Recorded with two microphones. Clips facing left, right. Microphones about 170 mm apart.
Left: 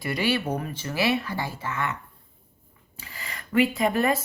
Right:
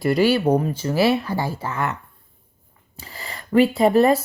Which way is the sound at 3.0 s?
35° right (ahead or behind).